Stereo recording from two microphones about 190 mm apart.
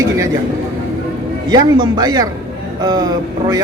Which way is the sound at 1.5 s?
20° right (ahead or behind).